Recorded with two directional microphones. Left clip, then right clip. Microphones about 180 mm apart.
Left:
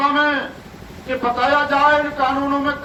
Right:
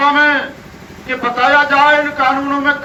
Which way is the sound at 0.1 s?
35° left (ahead or behind).